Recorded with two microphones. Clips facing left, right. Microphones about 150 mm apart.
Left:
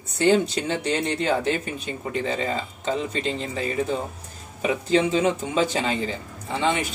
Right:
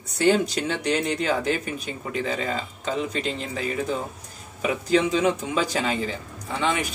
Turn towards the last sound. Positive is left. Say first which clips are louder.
# left 1 dB
turn(degrees=25)  # may be behind; listen again after turning